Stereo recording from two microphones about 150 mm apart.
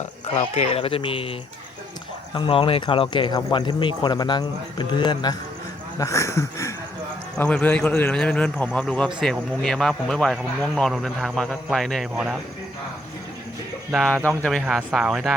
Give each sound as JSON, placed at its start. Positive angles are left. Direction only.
{"t": 0.3, "sound": "speech", "side_deg": 45}
{"t": 2.3, "sound": "a man's voice", "side_deg": 35}
{"t": 13.9, "sound": "a man's voice", "side_deg": 0}
{"t": 14.7, "sound": "speech", "side_deg": -5}